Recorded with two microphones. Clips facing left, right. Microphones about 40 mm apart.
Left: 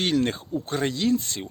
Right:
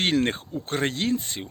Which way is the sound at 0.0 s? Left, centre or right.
Right.